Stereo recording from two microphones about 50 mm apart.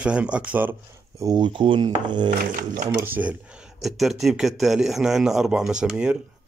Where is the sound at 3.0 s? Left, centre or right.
Right.